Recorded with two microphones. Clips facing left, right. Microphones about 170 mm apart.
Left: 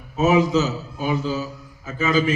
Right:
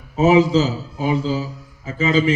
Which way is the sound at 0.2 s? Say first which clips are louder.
Right 3 dB; 30° right (ahead or behind).